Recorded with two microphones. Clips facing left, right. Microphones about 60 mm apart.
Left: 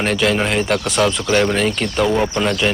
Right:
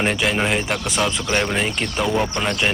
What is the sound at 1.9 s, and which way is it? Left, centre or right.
Speech, centre.